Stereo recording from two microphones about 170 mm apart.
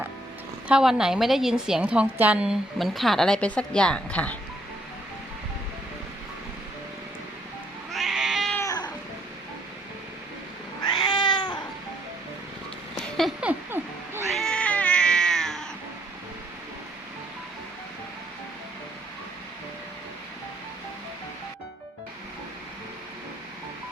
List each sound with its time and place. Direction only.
0.7 s a woman's voice: 5° right (ahead or behind)
7.9 s cat: centre (ahead or behind)
8.5 s cat: 20° left (ahead or behind)
10.8 s cat: 25° left (ahead or behind)
13.0 s a sound: centre (ahead or behind)
14.3 s cat: 5° left (ahead or behind)